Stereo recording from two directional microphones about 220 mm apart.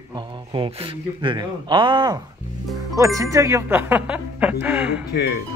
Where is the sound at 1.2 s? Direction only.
20° right (ahead or behind); by 5.0 s 5° right (ahead or behind).